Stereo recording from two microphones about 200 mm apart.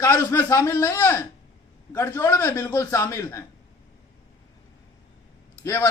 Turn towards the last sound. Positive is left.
turn(degrees=15)  # may be behind; listen again after turning